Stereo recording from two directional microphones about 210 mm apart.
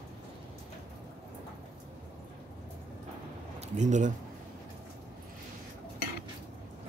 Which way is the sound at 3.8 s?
35° right (ahead or behind).